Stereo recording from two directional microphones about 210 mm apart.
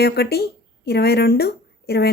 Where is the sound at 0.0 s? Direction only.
50° left (ahead or behind).